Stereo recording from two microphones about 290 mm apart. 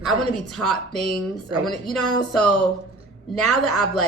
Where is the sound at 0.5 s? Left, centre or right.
Centre.